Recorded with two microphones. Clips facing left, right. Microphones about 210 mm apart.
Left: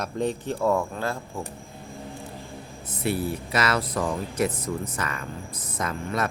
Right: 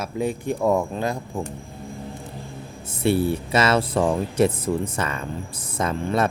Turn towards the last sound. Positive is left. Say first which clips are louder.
# right 6 dB
turn(degrees=-30)  # may be behind; listen again after turning